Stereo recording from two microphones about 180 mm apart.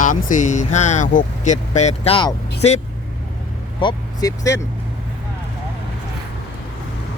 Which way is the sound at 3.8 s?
20° left (ahead or behind).